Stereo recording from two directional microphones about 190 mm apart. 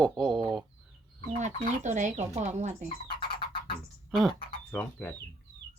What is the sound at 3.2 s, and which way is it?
Music, 25° left (ahead or behind).